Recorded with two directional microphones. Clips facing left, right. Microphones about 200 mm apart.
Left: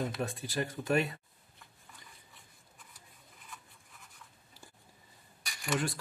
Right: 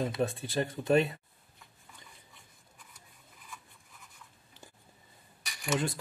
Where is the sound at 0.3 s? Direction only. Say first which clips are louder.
Right 3 dB; 25° right (ahead or behind).